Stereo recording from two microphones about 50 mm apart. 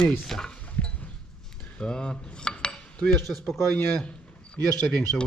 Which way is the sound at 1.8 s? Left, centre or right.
Centre.